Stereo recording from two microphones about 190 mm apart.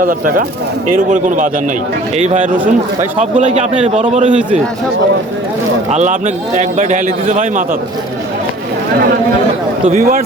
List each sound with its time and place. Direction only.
0.0 s a man's voice: 45° right (ahead or behind)
5.9 s a man's voice: 40° right (ahead or behind)
10.0 s speech: 50° right (ahead or behind)